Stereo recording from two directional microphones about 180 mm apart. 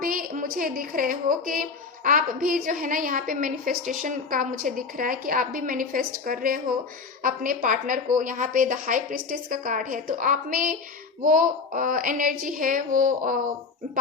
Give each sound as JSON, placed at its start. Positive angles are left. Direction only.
{"t": 0.0, "sound": "a woman's voice", "side_deg": -50}